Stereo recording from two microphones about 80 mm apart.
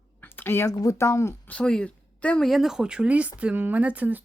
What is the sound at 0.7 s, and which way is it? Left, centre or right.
Speech, left.